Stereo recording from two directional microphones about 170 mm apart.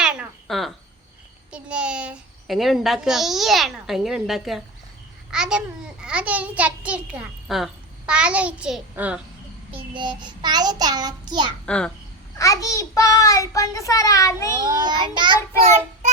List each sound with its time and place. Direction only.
0.0 s a sound: 5° right (ahead or behind)
1.5 s a child's voice: 5° right (ahead or behind)
9.7 s child singing: 30° right (ahead or behind)
11.6 s a child's voice: 5° left (ahead or behind)
12.4 s child singing: 20° left (ahead or behind)
14.6 s child singing: 25° right (ahead or behind)